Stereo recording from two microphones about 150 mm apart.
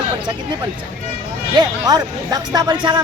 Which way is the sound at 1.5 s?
25° right (ahead or behind).